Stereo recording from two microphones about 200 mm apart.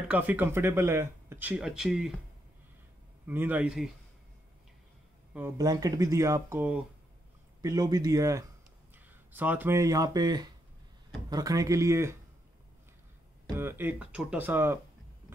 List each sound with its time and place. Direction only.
0.1 s speech: 10° right (ahead or behind)
3.3 s speech: 10° right (ahead or behind)
5.3 s speech: 15° right (ahead or behind)
13.6 s speech: 10° right (ahead or behind)